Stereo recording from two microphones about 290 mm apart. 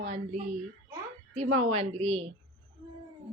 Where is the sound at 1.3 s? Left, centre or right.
Right.